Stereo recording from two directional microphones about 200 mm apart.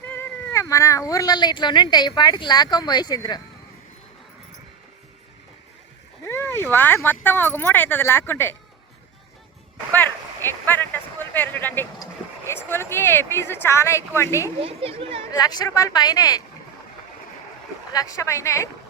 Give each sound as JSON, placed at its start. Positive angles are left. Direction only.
{"t": 0.1, "sound": "speech", "side_deg": 10}
{"t": 6.2, "sound": "speech", "side_deg": 10}
{"t": 9.9, "sound": "speech", "side_deg": 10}
{"t": 14.6, "sound": "speech", "side_deg": -30}
{"t": 15.3, "sound": "speech", "side_deg": 20}
{"t": 17.9, "sound": "speech", "side_deg": 15}